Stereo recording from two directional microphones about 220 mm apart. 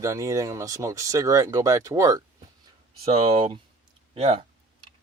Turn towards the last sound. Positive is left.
turn(degrees=-30)  # may be behind; listen again after turning